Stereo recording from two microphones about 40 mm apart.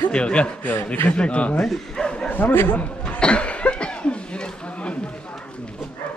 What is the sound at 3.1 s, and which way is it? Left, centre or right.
Cough, left.